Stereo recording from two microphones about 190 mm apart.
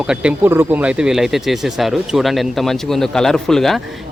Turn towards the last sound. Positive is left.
turn(degrees=0)  # may be behind; listen again after turning